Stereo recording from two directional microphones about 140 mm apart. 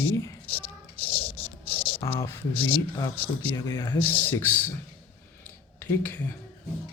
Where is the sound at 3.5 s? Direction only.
20° left (ahead or behind).